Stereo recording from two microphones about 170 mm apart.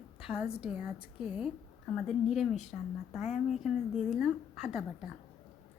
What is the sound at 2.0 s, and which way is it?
A woman's voice, centre (ahead or behind).